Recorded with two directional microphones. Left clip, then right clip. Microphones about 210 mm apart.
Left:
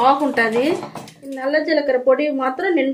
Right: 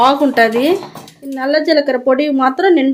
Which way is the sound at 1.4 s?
50° right (ahead or behind).